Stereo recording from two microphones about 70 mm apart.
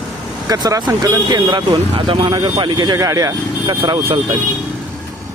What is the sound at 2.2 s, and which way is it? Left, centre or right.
Speech, right.